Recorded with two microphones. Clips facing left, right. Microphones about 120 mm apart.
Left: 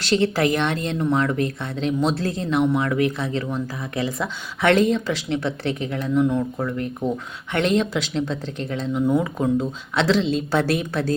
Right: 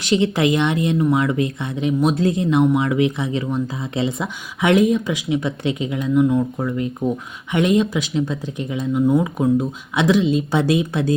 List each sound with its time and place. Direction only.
0.3 s speech: 20° right (ahead or behind)